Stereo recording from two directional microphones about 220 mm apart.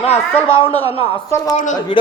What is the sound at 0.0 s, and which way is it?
Speech, 30° left (ahead or behind).